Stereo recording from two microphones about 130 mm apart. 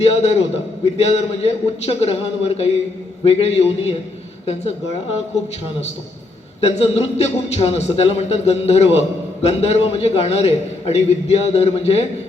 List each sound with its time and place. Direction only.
0.0 s a man's voice: 55° left (ahead or behind)
6.6 s a man's voice: 55° left (ahead or behind)